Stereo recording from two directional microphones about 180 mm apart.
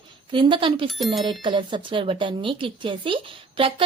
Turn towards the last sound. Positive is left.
turn(degrees=-30)  # may be behind; listen again after turning